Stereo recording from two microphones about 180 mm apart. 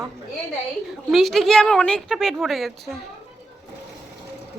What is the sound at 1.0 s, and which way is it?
A woman's voice, centre (ahead or behind).